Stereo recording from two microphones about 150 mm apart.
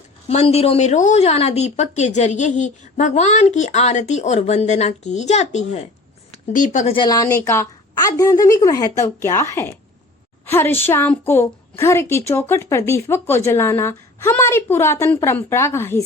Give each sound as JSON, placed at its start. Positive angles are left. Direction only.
{"t": 0.3, "sound": "speech", "side_deg": 45}
{"t": 6.5, "sound": "speech", "side_deg": 60}
{"t": 6.8, "sound": "a woman's voice", "side_deg": 30}